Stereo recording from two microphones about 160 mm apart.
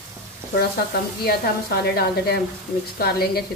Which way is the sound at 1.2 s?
75° left (ahead or behind).